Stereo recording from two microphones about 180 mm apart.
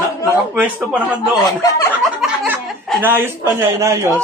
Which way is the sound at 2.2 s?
10° right (ahead or behind).